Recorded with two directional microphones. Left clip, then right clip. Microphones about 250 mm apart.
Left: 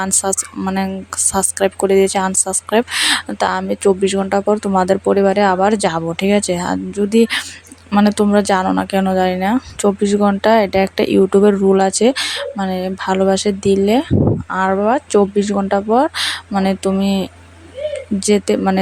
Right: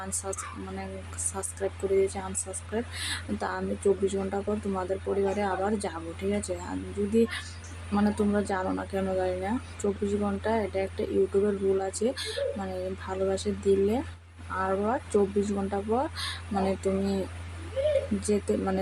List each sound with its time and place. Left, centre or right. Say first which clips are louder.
0.0 s speech: left 16 dB; left
18.2 s speech: left 13 dB; left